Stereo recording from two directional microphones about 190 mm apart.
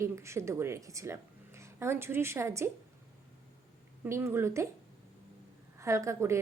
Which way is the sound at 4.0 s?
10° right (ahead or behind).